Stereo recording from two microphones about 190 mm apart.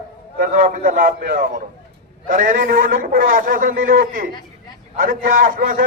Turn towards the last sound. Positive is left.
turn(degrees=-45)  # may be behind; listen again after turning